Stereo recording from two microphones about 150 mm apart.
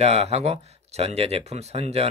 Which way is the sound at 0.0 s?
45° right (ahead or behind).